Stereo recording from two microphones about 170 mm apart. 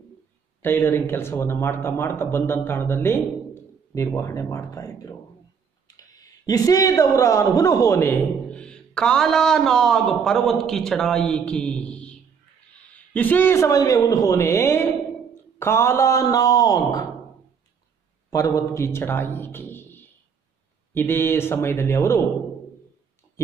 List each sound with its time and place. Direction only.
0.6 s a man's voice: 10° left (ahead or behind)
18.3 s speech: 20° left (ahead or behind)